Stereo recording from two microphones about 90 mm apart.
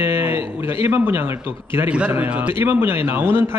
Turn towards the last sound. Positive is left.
turn(degrees=-25)  # may be behind; listen again after turning